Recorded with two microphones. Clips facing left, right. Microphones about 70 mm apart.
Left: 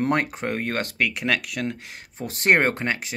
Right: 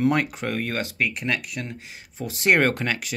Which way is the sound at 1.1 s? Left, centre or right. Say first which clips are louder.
Left 2 dB; left.